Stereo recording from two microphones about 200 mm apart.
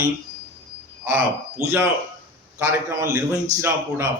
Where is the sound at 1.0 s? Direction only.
10° right (ahead or behind).